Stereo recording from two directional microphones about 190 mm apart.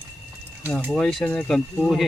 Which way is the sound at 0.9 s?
Centre (ahead or behind).